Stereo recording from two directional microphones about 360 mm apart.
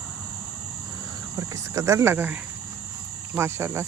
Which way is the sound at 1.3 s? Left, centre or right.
Centre.